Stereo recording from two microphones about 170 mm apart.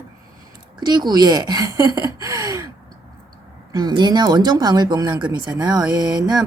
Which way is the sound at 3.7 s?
25° right (ahead or behind).